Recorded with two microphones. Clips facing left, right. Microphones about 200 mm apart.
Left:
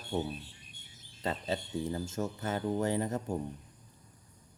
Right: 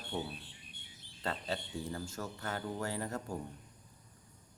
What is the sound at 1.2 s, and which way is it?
Speech, 20° left (ahead or behind).